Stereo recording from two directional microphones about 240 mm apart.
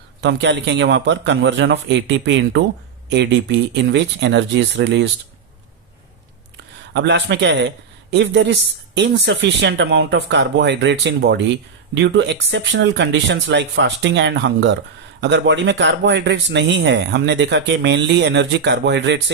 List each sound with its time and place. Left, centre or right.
0.2 s speech: right
6.9 s speech: right